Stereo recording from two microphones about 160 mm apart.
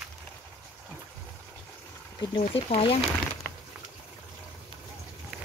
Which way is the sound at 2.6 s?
40° left (ahead or behind).